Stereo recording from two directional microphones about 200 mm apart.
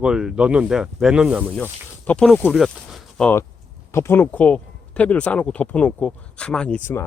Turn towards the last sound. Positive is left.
turn(degrees=10)  # may be behind; listen again after turning